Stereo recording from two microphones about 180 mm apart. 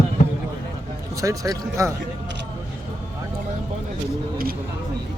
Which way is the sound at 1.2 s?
20° right (ahead or behind).